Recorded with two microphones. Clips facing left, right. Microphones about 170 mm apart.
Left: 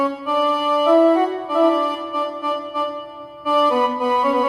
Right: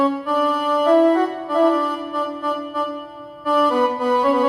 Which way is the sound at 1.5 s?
15° left (ahead or behind).